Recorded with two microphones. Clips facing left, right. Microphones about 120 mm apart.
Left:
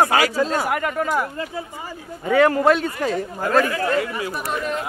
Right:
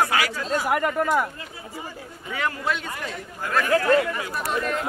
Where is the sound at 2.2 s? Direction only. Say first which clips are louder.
Left 12 dB; 55° left (ahead or behind); by 3.7 s 35° left (ahead or behind).